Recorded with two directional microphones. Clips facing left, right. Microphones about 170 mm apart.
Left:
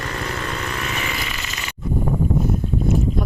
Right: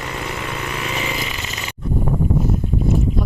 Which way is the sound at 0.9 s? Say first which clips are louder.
Right 3 dB; 20° right (ahead or behind).